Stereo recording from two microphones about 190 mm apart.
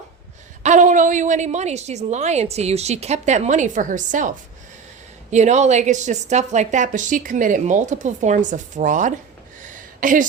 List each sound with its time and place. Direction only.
0.6 s a woman's voice: 40° right (ahead or behind)
5.3 s a woman's voice: 40° right (ahead or behind)
9.6 s a sound: 45° right (ahead or behind)